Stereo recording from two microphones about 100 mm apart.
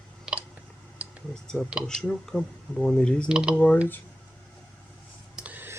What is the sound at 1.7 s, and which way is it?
Speech, 5° right (ahead or behind).